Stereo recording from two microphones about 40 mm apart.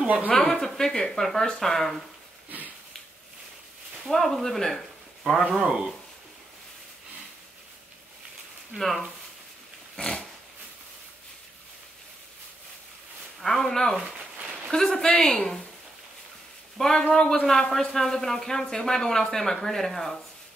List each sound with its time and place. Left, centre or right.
0.0 s a woman's voice: right
0.3 s speech: centre
4.1 s speech: centre
8.7 s speech: centre
9.9 s dog: left
13.4 s speech: centre
14.0 s a sound: right
14.7 s speech: centre
16.7 s speech: centre